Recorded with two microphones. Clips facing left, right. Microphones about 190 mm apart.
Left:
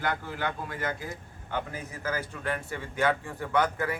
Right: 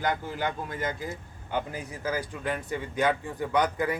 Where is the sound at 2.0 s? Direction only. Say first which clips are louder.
Right 2 dB; 15° right (ahead or behind).